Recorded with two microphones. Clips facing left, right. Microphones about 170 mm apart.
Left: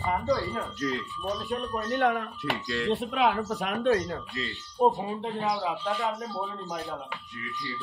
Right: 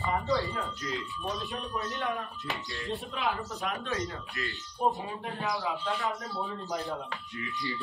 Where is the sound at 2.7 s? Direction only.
80° left.